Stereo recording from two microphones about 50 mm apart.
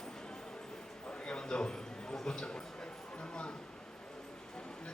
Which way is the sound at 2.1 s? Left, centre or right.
Centre.